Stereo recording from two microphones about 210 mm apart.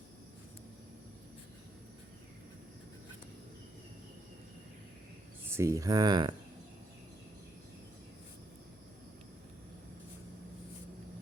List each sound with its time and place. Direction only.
5.5 s speech: 10° right (ahead or behind)